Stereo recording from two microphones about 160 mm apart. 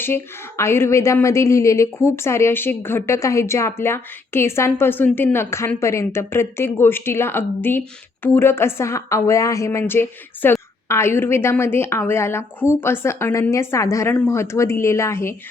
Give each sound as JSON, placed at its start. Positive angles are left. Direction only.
{"t": 0.0, "sound": "speech", "side_deg": 15}